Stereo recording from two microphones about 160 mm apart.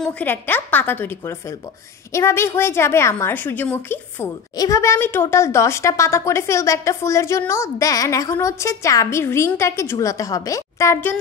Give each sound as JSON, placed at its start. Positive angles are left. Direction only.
{"t": 0.0, "sound": "a woman's voice", "side_deg": 10}